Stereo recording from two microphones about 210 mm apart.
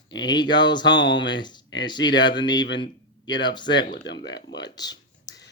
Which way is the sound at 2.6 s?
55° left (ahead or behind).